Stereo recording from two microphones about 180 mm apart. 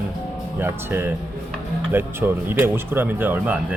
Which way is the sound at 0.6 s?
15° right (ahead or behind).